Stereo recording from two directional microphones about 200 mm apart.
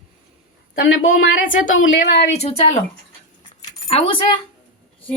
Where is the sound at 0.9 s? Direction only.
80° left.